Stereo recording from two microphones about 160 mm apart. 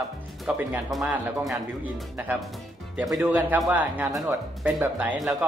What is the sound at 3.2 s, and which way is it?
Speech, 10° right (ahead or behind).